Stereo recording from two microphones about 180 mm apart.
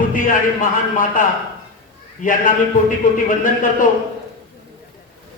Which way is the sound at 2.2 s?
50° left (ahead or behind).